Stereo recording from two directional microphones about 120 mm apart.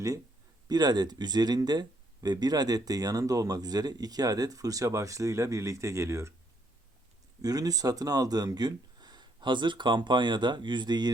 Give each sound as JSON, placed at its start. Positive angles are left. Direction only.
{"t": 0.7, "sound": "speech", "side_deg": -35}
{"t": 7.4, "sound": "speech", "side_deg": -30}